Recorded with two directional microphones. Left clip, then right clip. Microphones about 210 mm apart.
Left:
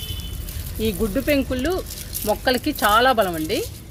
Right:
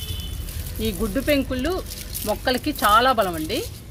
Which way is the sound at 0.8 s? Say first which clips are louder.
Left 3 dB; 25° left (ahead or behind).